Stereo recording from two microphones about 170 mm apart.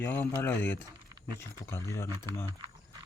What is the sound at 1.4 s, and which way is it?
Speech, 15° left (ahead or behind).